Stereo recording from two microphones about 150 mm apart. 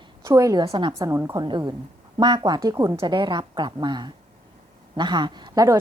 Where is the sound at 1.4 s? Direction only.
30° right (ahead or behind).